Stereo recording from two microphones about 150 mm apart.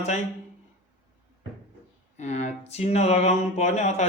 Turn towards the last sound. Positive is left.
turn(degrees=50)  # may be behind; listen again after turning